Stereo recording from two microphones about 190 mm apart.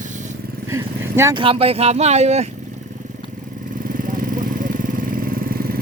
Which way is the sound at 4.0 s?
45° right (ahead or behind).